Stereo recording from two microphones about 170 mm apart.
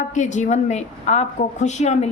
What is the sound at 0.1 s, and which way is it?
A woman's voice, 45° left (ahead or behind).